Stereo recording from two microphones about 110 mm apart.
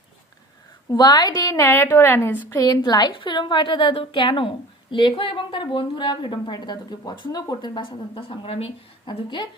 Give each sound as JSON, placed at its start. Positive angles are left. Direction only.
{"t": 0.9, "sound": "a woman's voice", "side_deg": 40}
{"t": 2.5, "sound": "a woman's voice", "side_deg": 35}